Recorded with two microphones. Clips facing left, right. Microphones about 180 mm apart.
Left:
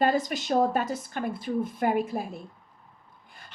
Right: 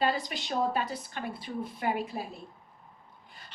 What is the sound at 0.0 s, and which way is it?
A woman's voice, 45° left (ahead or behind).